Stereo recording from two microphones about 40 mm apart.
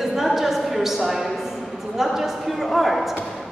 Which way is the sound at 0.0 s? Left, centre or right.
Centre.